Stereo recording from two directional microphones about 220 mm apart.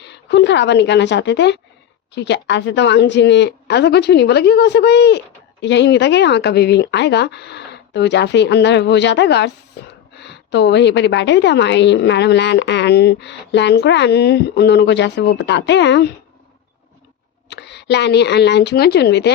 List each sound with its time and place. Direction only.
0.0 s a woman's voice: 50° left (ahead or behind)
17.5 s a woman's voice: 50° left (ahead or behind)